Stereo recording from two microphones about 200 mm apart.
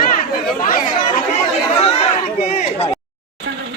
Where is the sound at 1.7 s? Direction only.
30° left (ahead or behind).